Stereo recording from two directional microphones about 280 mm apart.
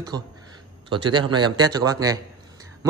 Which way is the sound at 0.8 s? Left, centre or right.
Centre.